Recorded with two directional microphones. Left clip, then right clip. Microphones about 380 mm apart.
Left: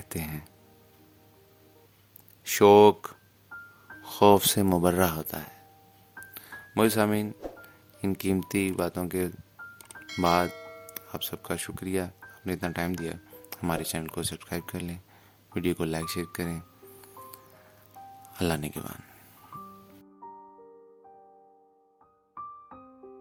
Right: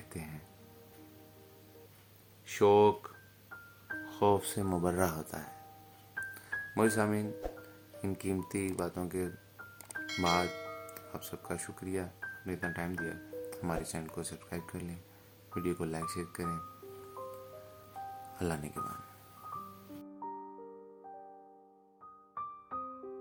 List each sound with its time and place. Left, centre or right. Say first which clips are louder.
0.1 s speech: left 10 dB; left
2.4 s speech: left 8 dB; left
6.3 s music: left 6 dB; left
8.0 s speech: left 7 dB; left
10.4 s music: left 4 dB; centre
10.9 s speech: left 8 dB; left
18.3 s speech: left 8 dB; left